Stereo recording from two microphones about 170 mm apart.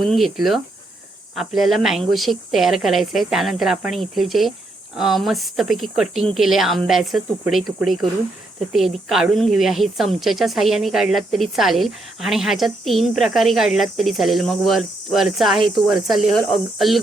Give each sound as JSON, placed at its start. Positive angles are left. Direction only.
{"t": 0.0, "sound": "speech", "side_deg": 0}